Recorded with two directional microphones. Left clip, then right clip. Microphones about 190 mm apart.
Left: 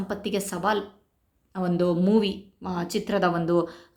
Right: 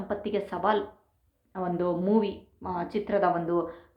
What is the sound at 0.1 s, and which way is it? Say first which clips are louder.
A woman's voice: even; 30° left (ahead or behind).